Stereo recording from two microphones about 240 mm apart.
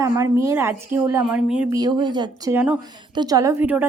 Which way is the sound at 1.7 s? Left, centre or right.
Centre.